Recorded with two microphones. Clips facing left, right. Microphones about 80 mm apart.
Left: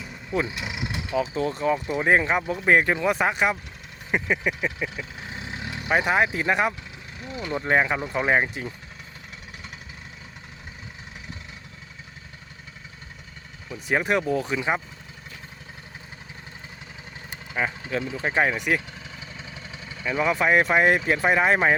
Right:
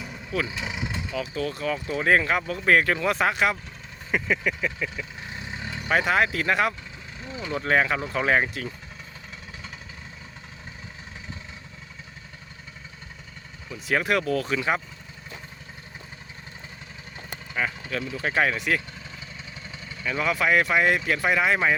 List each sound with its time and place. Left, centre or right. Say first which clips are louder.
0.0 s vehicle: left 2 dB; centre
1.1 s speech: left 6 dB; left
7.2 s speech: left 2 dB; centre
7.5 s speech: even; centre
13.8 s speech: left 1 dB; left
17.5 s speech: left 2 dB; left
20.0 s speech: left 2 dB; centre; by 21.0 s left
21.0 s speech: left 2 dB; left
21.2 s speech: left 2 dB; left